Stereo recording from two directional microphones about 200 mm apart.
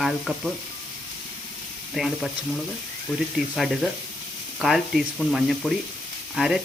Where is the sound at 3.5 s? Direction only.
Centre (ahead or behind).